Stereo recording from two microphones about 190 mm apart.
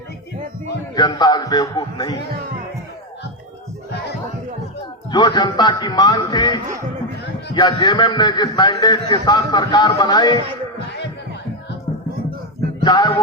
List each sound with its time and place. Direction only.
0.9 s a man's voice: 20° left (ahead or behind)
5.1 s a man's voice: 20° left (ahead or behind)
12.8 s music: 20° left (ahead or behind)